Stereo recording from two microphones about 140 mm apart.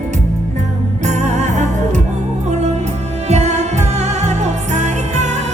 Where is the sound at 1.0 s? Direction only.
55° right (ahead or behind).